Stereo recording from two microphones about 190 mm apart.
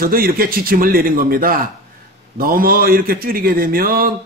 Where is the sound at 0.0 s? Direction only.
50° right (ahead or behind).